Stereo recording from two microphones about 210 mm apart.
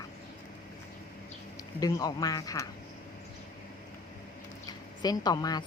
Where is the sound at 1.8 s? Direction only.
20° left (ahead or behind).